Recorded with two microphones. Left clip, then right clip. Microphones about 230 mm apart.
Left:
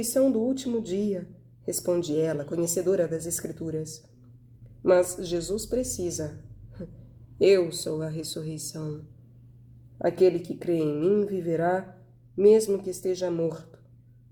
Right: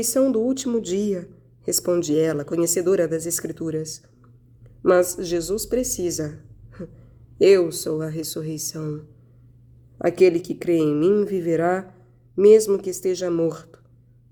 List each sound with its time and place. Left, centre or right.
0.0 s speech: right
7.4 s speech: right
10.0 s speech: right